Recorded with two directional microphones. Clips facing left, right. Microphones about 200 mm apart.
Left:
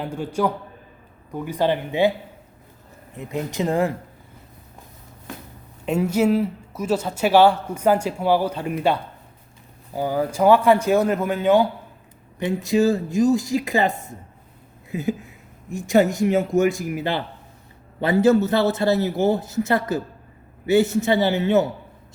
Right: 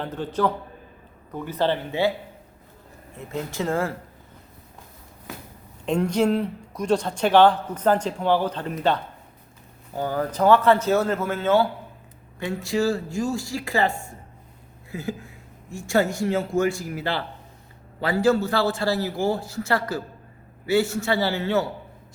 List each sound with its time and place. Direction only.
0.0 s speech: 10° left (ahead or behind)
3.2 s a man's voice: 15° left (ahead or behind)
5.8 s a man's voice: 5° left (ahead or behind)
14.8 s a sound: 20° left (ahead or behind)
15.9 s a man's voice: 20° left (ahead or behind)